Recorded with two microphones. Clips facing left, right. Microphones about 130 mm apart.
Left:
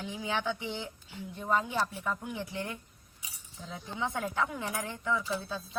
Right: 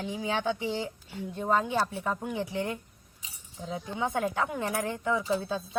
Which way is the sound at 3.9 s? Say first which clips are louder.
Right 3 dB; 55° right (ahead or behind).